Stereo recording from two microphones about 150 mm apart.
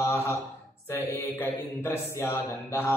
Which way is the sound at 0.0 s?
20° left (ahead or behind).